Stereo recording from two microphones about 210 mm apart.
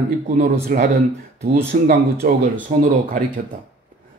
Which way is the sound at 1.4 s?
50° right (ahead or behind).